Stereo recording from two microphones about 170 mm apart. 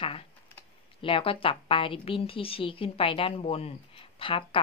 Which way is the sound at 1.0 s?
30° left (ahead or behind).